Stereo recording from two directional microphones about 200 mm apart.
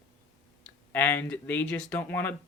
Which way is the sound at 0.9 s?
10° left (ahead or behind).